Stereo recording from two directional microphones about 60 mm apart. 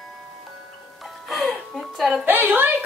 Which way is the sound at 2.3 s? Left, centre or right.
Right.